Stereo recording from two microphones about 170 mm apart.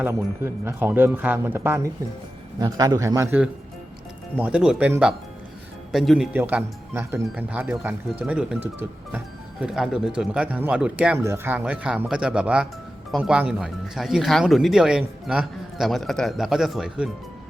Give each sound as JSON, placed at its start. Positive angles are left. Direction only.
{"t": 0.0, "sound": "a man's voice", "side_deg": -15}